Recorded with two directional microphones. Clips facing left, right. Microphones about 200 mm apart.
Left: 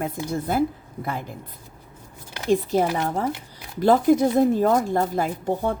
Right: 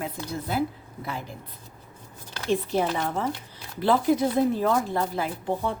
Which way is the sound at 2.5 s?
45° left (ahead or behind).